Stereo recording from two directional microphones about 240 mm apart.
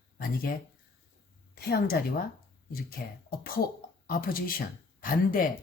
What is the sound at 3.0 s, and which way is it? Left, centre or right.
Speech, left.